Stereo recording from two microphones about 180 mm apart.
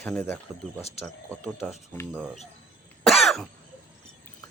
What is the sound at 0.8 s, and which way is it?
Speech, 35° left (ahead or behind).